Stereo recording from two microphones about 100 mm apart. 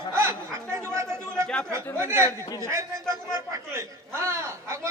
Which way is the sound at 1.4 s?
10° left (ahead or behind).